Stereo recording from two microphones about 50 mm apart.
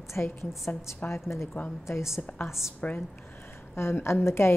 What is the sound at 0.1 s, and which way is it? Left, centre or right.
Speech, left.